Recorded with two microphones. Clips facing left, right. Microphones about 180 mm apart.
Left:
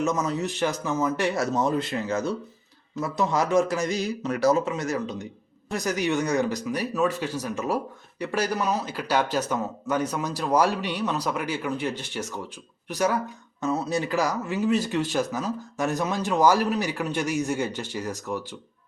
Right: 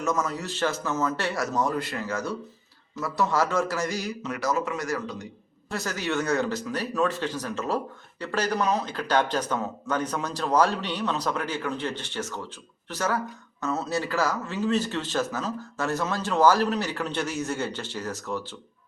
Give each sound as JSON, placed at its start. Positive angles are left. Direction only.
{"t": 0.0, "sound": "a man's voice", "side_deg": 20}
{"t": 4.2, "sound": "a man's voice", "side_deg": 30}